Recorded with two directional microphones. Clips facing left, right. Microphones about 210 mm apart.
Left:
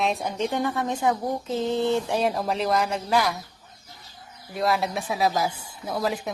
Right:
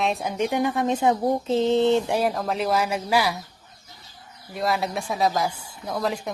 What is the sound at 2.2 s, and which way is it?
A woman's voice, 5° left (ahead or behind).